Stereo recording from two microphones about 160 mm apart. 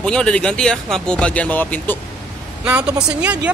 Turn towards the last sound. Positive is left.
turn(degrees=-10)  # may be behind; listen again after turning